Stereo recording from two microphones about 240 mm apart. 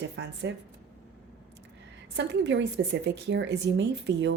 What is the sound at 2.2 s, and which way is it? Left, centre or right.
Speech, right.